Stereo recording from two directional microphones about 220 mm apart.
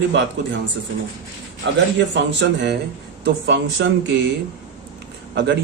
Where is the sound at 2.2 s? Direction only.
50° right (ahead or behind).